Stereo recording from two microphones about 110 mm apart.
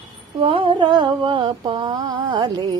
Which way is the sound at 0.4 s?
50° right (ahead or behind).